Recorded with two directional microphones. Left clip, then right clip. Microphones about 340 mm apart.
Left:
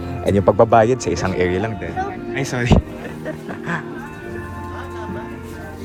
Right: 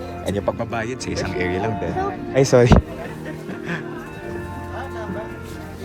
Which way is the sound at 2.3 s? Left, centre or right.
Centre.